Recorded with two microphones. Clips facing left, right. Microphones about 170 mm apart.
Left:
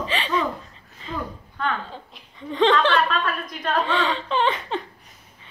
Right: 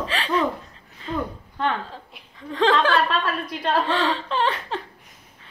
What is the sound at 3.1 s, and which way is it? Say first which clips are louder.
Speech: right 1 dB; 30° right (ahead or behind).